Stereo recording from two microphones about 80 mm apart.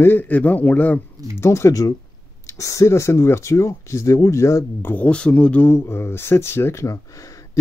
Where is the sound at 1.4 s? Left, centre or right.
Left.